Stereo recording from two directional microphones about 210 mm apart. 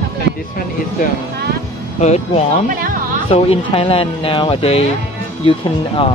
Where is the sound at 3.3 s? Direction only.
25° left (ahead or behind).